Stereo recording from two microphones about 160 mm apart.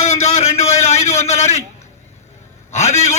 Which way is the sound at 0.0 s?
45° left (ahead or behind).